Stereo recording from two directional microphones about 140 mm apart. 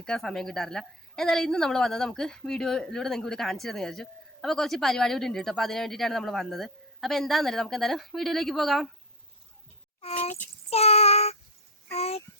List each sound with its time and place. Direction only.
0.0 s a woman's voice: 5° left (ahead or behind)
10.0 s child singing: 45° left (ahead or behind)